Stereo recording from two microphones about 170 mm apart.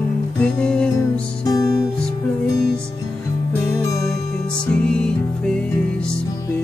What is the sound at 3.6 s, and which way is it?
Music, 20° left (ahead or behind).